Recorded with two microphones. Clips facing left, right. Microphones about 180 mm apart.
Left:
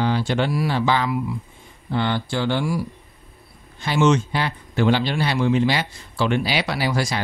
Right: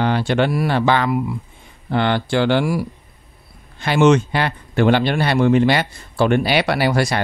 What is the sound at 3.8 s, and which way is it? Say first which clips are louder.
Speech: right 4 dB; 65° right (ahead or behind).